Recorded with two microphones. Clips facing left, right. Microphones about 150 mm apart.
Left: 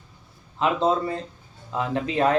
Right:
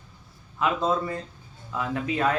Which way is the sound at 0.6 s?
25° left (ahead or behind).